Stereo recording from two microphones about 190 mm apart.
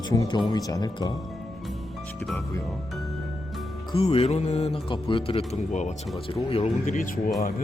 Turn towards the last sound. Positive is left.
turn(degrees=45)  # may be behind; listen again after turning